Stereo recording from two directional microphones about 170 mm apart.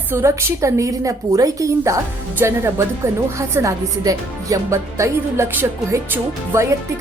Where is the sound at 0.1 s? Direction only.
15° right (ahead or behind).